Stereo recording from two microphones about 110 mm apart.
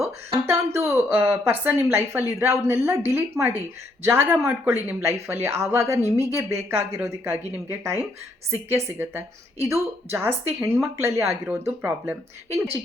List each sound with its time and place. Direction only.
0.0 s speech: 20° right (ahead or behind)